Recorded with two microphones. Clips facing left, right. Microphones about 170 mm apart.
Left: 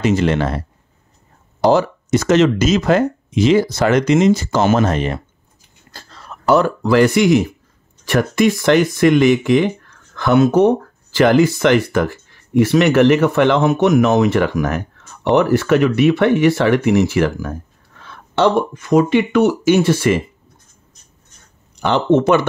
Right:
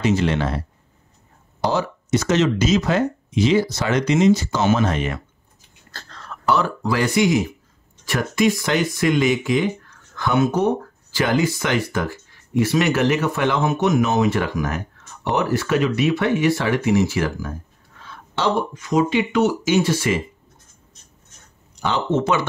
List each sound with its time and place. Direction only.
0.0 s speech: 50° left (ahead or behind)
1.7 s speech: 50° left (ahead or behind)
5.9 s whispering: 10° left (ahead or behind)
6.4 s speech: 50° left (ahead or behind)
21.7 s speech: 60° left (ahead or behind)